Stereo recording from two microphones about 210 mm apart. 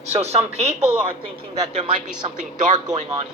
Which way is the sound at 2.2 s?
35° right (ahead or behind).